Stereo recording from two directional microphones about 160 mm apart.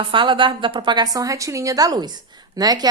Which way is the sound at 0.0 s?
30° right (ahead or behind).